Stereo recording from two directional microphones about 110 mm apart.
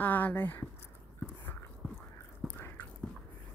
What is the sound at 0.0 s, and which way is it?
Speech, 15° left (ahead or behind).